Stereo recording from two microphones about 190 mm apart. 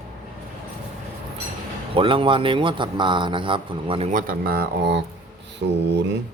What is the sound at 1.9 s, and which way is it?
A man's voice, 25° right (ahead or behind).